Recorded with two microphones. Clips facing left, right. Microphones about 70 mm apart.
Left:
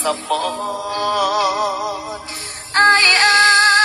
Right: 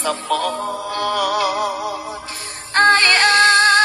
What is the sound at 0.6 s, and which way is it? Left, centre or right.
Music, centre.